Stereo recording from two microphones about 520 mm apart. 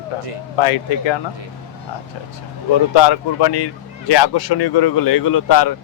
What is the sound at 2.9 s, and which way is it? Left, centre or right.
Speech, left.